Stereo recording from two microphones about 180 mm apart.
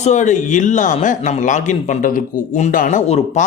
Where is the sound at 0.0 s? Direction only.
40° left (ahead or behind).